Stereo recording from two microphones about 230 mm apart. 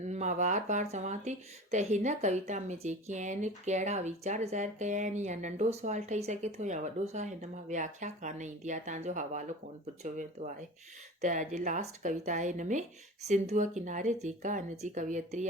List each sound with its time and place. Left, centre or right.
0.0 s speech: right